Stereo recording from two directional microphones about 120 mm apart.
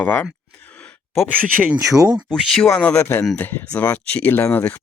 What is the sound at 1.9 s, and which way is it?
Speech, 30° right (ahead or behind).